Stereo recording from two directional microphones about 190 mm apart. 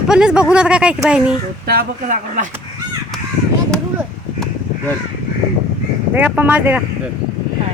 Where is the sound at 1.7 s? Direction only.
50° right (ahead or behind).